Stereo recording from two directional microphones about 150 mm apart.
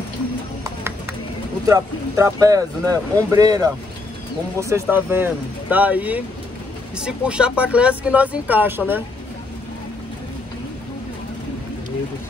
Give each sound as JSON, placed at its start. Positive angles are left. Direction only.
{"t": 1.7, "sound": "speech", "side_deg": -20}